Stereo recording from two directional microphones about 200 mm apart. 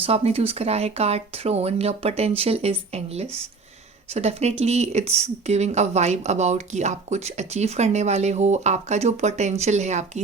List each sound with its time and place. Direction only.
0.0 s speech: 30° right (ahead or behind)